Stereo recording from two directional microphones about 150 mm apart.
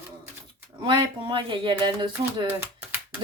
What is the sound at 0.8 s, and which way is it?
Speech, 30° right (ahead or behind).